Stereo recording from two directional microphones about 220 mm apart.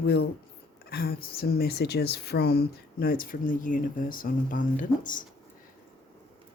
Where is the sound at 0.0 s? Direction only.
45° left (ahead or behind).